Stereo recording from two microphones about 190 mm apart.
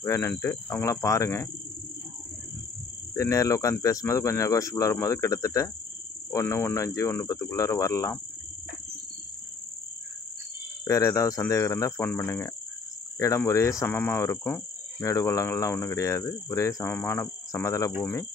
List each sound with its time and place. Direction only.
0.0 s speech: 15° left (ahead or behind)
3.2 s speech: 15° left (ahead or behind)
10.9 s speech: 15° left (ahead or behind)